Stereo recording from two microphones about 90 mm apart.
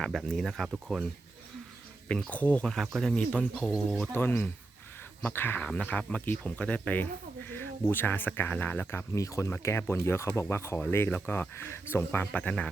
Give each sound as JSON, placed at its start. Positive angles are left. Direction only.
{"t": 0.0, "sound": "speech", "side_deg": 5}
{"t": 2.0, "sound": "speech", "side_deg": 10}
{"t": 2.6, "sound": "speech", "side_deg": 0}
{"t": 3.2, "sound": "speech", "side_deg": 15}
{"t": 4.1, "sound": "speech", "side_deg": 25}
{"t": 9.1, "sound": "speech", "side_deg": 35}
{"t": 9.5, "sound": "speech", "side_deg": 25}